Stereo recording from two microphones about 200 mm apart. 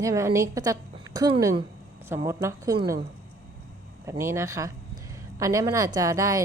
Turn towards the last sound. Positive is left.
turn(degrees=-15)  # may be behind; listen again after turning